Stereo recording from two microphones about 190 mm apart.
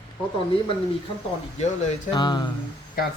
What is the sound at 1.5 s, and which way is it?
Speech, 35° left (ahead or behind).